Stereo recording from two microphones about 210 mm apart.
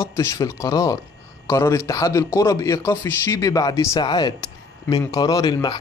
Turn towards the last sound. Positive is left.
turn(degrees=20)  # may be behind; listen again after turning